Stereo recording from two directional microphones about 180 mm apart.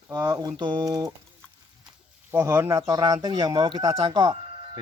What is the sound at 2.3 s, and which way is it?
Speech, 15° right (ahead or behind).